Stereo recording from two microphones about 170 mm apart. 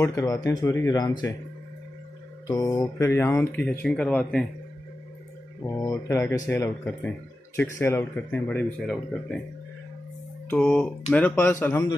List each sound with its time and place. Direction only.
0.0 s speech: 20° left (ahead or behind)
2.4 s speech: 20° left (ahead or behind); by 4.5 s 5° left (ahead or behind)
5.7 s speech: 20° left (ahead or behind)
10.5 s speech: 5° left (ahead or behind)